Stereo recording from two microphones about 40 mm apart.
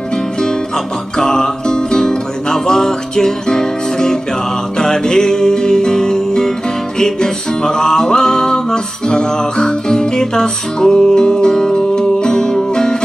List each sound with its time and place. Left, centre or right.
1.1 s music: centre